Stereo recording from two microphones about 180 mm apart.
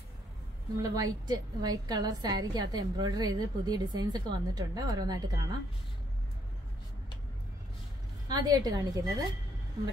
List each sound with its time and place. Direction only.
0.8 s a woman's voice: 20° right (ahead or behind)
8.3 s a woman's voice: 20° right (ahead or behind)